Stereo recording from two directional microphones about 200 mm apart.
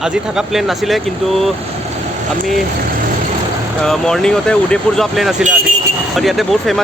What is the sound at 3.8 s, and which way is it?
Speech, centre (ahead or behind).